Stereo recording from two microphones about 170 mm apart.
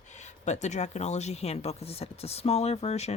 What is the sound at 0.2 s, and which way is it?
Speech, 45° left (ahead or behind).